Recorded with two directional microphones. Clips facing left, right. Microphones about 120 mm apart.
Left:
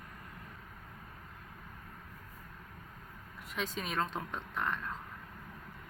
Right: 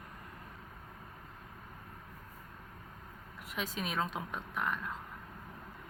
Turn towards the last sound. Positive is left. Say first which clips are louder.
# even
turn(degrees=-5)  # may be behind; listen again after turning